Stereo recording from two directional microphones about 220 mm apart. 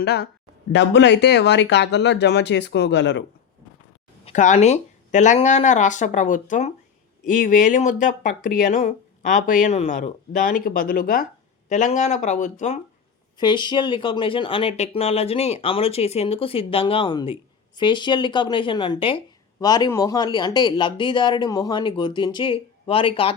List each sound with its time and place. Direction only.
0.0 s speech: 50° left (ahead or behind)
4.3 s speech: 30° left (ahead or behind)
13.3 s speech: 20° left (ahead or behind)